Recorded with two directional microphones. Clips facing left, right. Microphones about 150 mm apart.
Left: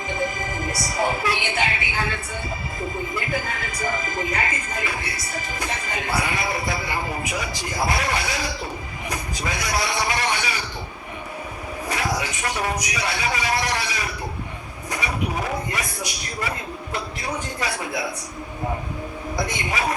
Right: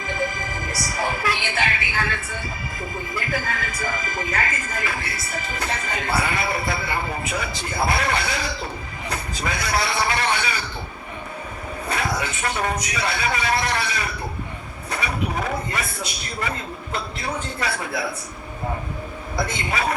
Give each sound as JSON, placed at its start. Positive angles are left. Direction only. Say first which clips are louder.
{"t": 0.1, "sound": "speech", "louder": "even", "side_deg": 20}
{"t": 5.0, "sound": "music", "louder": "even", "side_deg": -55}
{"t": 5.5, "sound": "speech", "louder": "right 1 dB", "side_deg": 10}
{"t": 11.9, "sound": "speech", "louder": "even", "side_deg": 10}
{"t": 14.8, "sound": "speech", "louder": "even", "side_deg": 15}
{"t": 19.4, "sound": "speech", "louder": "right 1 dB", "side_deg": 15}